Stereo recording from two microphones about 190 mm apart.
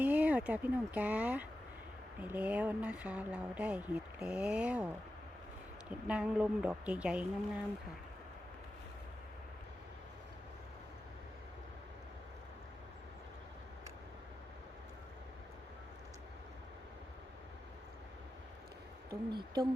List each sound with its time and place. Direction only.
0.0 s speech: 10° right (ahead or behind)
6.1 s speech: 5° right (ahead or behind)
19.3 s speech: 25° right (ahead or behind)